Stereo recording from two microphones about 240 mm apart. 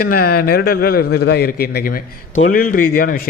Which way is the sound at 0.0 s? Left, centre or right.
Left.